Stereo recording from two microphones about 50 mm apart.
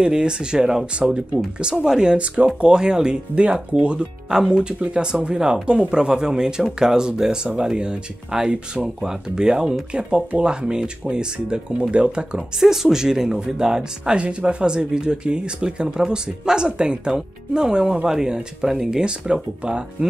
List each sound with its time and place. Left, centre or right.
0.0 s speech: centre
12.5 s speech: centre